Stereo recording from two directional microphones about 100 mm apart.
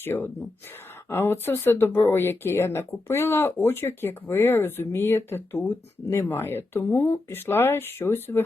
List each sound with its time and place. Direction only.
0.0 s speech: 20° left (ahead or behind)